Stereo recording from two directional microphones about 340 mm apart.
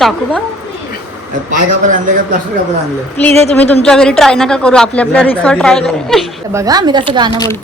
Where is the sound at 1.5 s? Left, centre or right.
Right.